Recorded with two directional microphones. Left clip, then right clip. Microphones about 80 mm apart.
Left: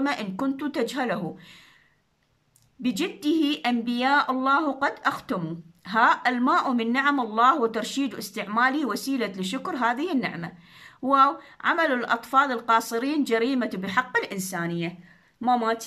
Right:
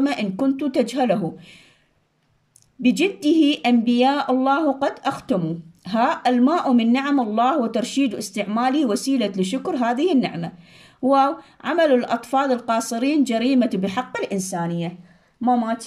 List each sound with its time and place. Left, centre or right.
0.0 s speech: right
2.8 s speech: right
14.5 s speech: centre
15.4 s speech: centre